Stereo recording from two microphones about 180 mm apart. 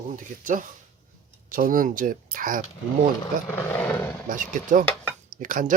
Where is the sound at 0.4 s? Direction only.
50° right (ahead or behind).